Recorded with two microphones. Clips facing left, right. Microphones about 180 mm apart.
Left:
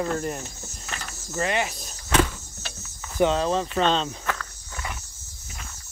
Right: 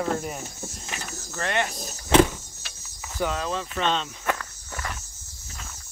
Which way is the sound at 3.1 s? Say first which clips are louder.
Left 6 dB; 25° left (ahead or behind).